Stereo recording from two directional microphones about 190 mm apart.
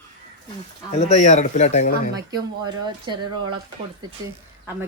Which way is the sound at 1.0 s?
35° left (ahead or behind).